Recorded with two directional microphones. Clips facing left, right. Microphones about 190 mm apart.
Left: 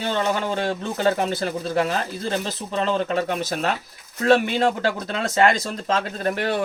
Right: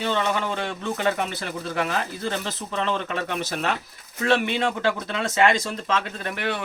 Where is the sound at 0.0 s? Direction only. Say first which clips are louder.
Left 1 dB; 35° left (ahead or behind).